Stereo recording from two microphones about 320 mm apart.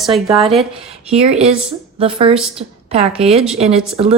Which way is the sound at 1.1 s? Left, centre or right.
Centre.